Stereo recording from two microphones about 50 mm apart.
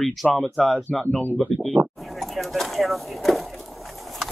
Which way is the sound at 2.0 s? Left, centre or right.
Centre.